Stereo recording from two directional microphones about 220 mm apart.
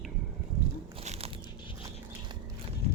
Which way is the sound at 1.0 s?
30° right (ahead or behind).